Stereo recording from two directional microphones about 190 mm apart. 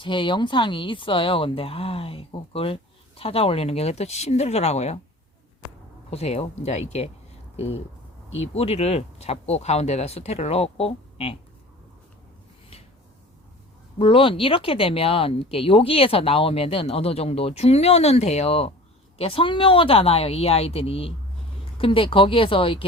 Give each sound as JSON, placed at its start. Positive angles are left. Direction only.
{"t": 0.0, "sound": "speech", "side_deg": 25}
{"t": 6.1, "sound": "speech", "side_deg": 35}
{"t": 14.0, "sound": "a woman's voice", "side_deg": 25}